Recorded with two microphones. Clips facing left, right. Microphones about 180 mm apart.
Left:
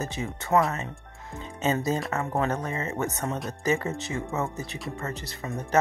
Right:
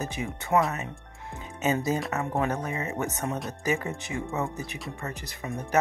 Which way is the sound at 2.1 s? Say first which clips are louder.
Left 1 dB; 15° right (ahead or behind).